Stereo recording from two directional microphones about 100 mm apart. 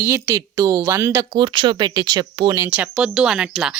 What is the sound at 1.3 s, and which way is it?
Speech, 50° right (ahead or behind).